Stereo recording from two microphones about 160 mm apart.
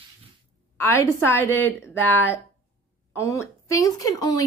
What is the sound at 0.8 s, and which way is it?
Speech, 15° left (ahead or behind).